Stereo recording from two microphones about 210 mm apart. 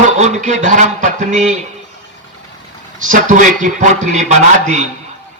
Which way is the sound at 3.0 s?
35° right (ahead or behind).